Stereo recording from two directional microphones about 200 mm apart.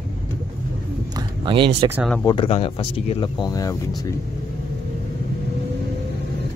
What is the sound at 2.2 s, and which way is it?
Speech, 25° left (ahead or behind).